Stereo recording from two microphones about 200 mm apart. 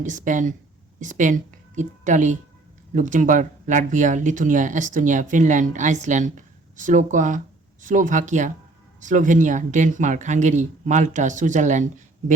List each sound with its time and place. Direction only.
0.0 s a woman's voice: 40° right (ahead or behind)